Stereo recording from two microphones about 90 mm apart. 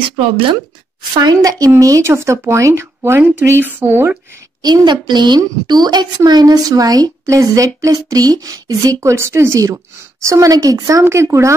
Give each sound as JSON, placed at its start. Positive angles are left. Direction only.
{"t": 1.1, "sound": "a woman's voice", "side_deg": -50}
{"t": 4.8, "sound": "a woman's voice", "side_deg": -55}